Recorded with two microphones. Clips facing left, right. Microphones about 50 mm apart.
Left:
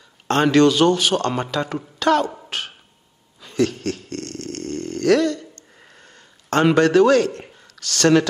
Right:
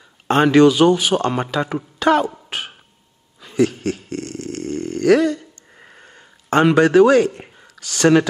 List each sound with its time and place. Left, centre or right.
0.3 s speech: centre
3.3 s dog: centre